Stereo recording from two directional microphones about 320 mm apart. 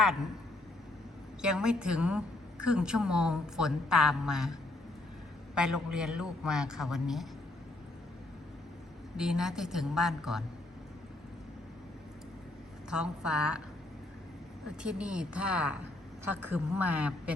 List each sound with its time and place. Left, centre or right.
1.4 s a woman's voice: centre
5.5 s a woman's voice: centre
9.1 s a woman's voice: centre
12.9 s a woman's voice: centre
14.8 s a woman's voice: centre
16.2 s a woman's voice: left
16.5 s a woman's voice: centre